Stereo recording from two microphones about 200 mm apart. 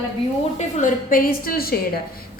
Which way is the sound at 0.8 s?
45° left (ahead or behind).